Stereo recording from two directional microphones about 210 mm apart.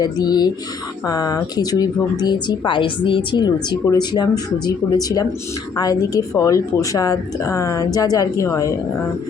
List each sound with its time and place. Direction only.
0.0 s speech: 20° left (ahead or behind)